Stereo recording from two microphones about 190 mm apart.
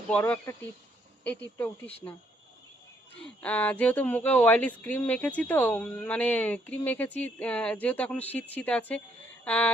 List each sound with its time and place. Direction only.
0.1 s speech: 10° left (ahead or behind)
3.2 s speech: 5° left (ahead or behind)